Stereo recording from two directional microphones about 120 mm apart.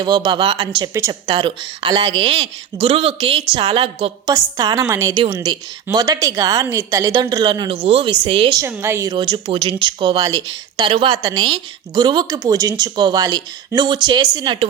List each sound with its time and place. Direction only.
0.0 s a woman's voice: 40° right (ahead or behind)
4.3 s a woman's voice: 30° right (ahead or behind)
7.9 s speech: 50° right (ahead or behind)
8.6 s a woman's voice: 20° right (ahead or behind)
9.0 s a woman's voice: 40° right (ahead or behind)
11.2 s a woman's voice: 35° right (ahead or behind)